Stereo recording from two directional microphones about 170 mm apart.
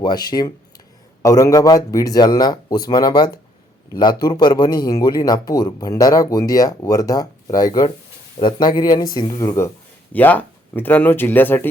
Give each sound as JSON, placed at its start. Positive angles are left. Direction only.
{"t": 0.0, "sound": "speech", "side_deg": 25}